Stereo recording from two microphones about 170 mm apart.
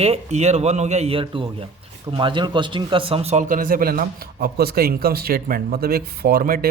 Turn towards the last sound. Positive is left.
turn(degrees=-60)  # may be behind; listen again after turning